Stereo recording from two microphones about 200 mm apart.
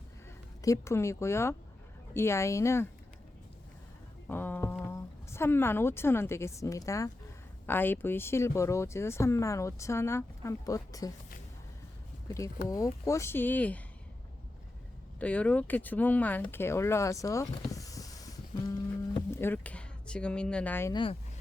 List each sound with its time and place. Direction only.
0.6 s speech: 15° left (ahead or behind)
4.3 s a woman's voice: 10° left (ahead or behind)
12.6 s speech: 15° left (ahead or behind)
15.2 s speech: 5° left (ahead or behind)
20.9 s speech: 25° left (ahead or behind)